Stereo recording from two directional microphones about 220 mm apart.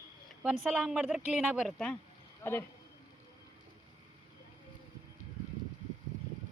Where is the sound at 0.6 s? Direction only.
Centre (ahead or behind).